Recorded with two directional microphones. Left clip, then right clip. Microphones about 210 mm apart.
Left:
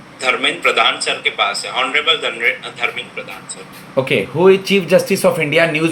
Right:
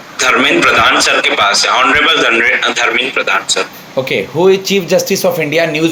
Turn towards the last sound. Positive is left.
turn(degrees=5)  # may be behind; listen again after turning